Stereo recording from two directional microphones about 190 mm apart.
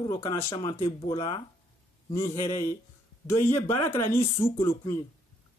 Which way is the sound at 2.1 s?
15° left (ahead or behind).